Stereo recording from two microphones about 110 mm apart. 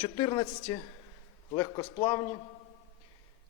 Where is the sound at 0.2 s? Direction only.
45° left (ahead or behind).